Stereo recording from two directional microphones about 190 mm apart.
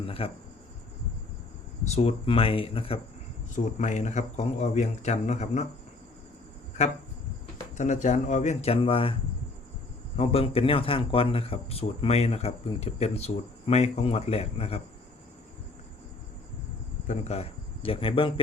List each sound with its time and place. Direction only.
0.0 s speech: 30° left (ahead or behind)
1.8 s speech: 35° left (ahead or behind)
3.5 s a man's voice: 40° left (ahead or behind)
7.8 s a man's voice: 40° left (ahead or behind)
10.2 s a man's voice: 30° left (ahead or behind)
17.1 s speech: 35° left (ahead or behind)